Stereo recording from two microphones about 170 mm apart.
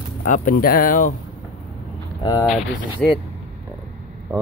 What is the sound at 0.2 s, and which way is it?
Speech, 55° left (ahead or behind).